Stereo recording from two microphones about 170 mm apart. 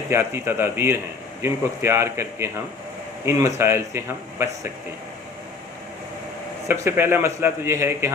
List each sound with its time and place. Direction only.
0.1 s a man's voice: 15° right (ahead or behind)
6.7 s a man's voice: 15° right (ahead or behind)